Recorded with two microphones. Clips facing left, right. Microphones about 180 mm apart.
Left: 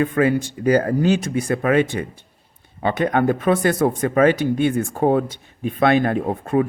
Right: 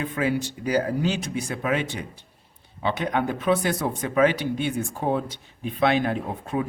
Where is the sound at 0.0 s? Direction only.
50° left (ahead or behind).